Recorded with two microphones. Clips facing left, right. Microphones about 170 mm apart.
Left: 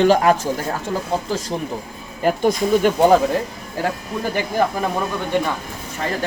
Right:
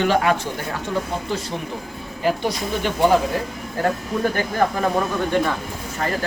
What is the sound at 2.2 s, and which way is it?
Speech, 45° left (ahead or behind).